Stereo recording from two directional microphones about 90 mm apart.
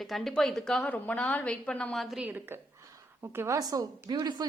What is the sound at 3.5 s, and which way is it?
Speech, 45° right (ahead or behind).